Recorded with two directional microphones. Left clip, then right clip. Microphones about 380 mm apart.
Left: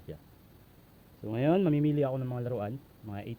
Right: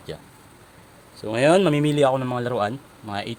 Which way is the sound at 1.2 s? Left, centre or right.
Centre.